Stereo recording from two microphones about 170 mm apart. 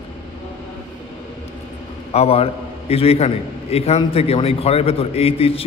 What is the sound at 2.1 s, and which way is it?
A man's voice, 35° left (ahead or behind).